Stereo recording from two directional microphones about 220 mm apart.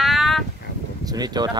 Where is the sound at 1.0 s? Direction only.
15° right (ahead or behind).